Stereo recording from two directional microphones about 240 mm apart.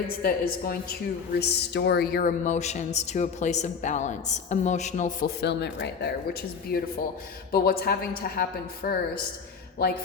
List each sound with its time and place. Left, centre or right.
0.1 s speech: left
5.4 s speech: left